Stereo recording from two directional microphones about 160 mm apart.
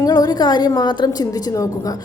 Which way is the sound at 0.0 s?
25° left (ahead or behind).